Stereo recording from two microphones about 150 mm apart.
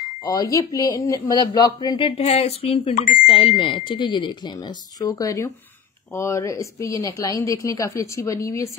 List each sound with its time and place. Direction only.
0.2 s a woman's voice: 25° left (ahead or behind)
2.0 s speech: 45° left (ahead or behind)
2.9 s speech: 65° left (ahead or behind)
3.3 s a woman's voice: 35° left (ahead or behind); by 8.6 s 20° left (ahead or behind)